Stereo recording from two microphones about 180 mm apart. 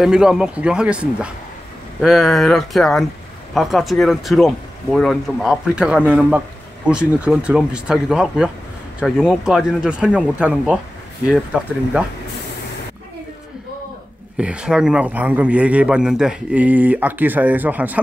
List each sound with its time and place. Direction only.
0.0 s a man's voice: 5° right (ahead or behind)
14.3 s a man's voice: 5° right (ahead or behind)